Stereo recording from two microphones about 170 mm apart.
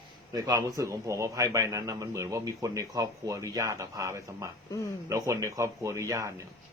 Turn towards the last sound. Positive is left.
turn(degrees=-20)  # may be behind; listen again after turning